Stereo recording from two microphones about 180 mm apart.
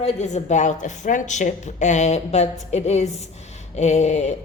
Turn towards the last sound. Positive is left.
turn(degrees=40)  # may be behind; listen again after turning